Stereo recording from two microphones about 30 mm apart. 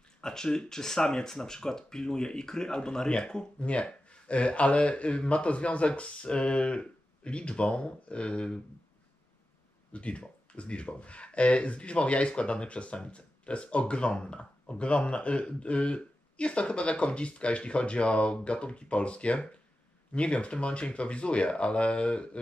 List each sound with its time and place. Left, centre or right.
0.2 s speech: left
3.6 s speech: left
9.9 s speech: left